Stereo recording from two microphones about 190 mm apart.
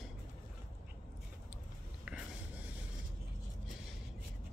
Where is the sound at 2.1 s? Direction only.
5° right (ahead or behind).